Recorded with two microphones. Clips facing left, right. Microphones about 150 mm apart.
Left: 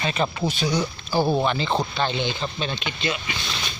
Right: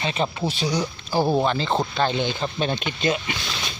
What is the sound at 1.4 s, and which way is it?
Speech, 35° right (ahead or behind).